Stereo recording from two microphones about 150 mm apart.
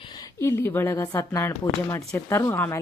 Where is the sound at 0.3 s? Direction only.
15° left (ahead or behind).